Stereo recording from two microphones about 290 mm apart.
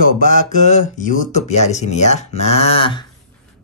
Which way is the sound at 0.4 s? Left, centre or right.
Left.